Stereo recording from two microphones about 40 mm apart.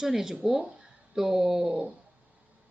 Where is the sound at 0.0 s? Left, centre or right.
Centre.